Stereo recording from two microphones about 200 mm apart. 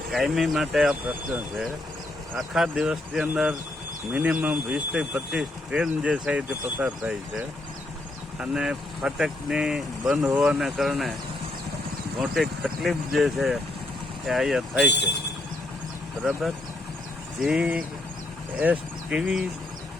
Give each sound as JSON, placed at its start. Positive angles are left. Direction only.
{"t": 0.1, "sound": "speech", "side_deg": 0}
{"t": 12.2, "sound": "speech", "side_deg": 0}
{"t": 14.8, "sound": "speech", "side_deg": 60}
{"t": 17.4, "sound": "speech", "side_deg": -5}